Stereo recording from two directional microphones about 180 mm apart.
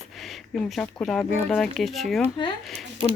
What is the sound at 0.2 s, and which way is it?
Speech, centre (ahead or behind).